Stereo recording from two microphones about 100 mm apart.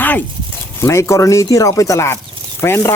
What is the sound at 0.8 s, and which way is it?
Speech, 30° left (ahead or behind).